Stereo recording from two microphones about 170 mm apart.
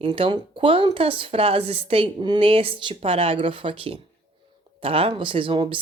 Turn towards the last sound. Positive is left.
turn(degrees=-30)  # may be behind; listen again after turning